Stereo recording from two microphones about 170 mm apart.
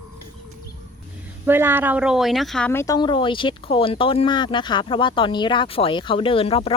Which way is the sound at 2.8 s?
25° left (ahead or behind).